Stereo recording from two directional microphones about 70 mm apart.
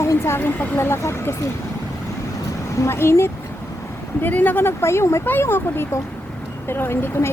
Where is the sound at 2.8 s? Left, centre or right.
Left.